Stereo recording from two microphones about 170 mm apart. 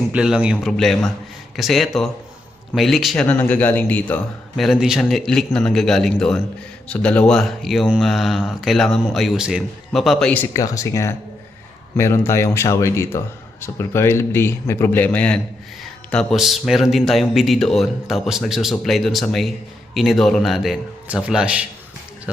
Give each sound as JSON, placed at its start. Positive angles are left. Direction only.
{"t": 0.1, "sound": "speech", "side_deg": -5}
{"t": 10.5, "sound": "a man's voice", "side_deg": 20}